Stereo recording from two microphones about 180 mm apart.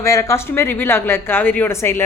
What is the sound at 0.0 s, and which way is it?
Speech, 15° left (ahead or behind).